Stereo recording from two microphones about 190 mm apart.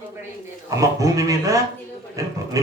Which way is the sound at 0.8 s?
15° right (ahead or behind).